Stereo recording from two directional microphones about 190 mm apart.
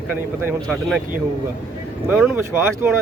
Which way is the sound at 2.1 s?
10° right (ahead or behind).